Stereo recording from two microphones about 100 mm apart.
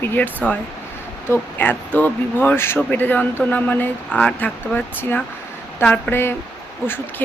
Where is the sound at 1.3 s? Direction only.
20° left (ahead or behind).